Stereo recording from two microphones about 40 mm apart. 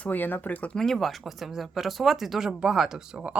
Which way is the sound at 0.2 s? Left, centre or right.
Left.